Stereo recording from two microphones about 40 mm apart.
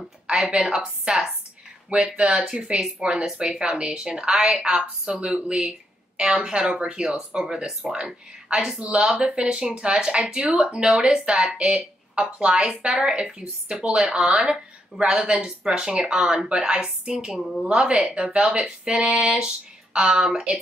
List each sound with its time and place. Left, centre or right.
0.5 s a woman's voice: right
1.9 s a woman's voice: right
9.0 s a woman's voice: centre
19.4 s speech: right